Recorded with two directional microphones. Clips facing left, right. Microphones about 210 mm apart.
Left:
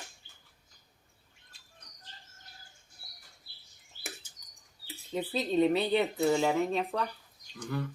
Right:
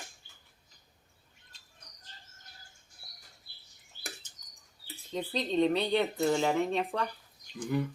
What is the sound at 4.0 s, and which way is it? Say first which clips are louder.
Bird: left 1 dB; 5° left (ahead or behind).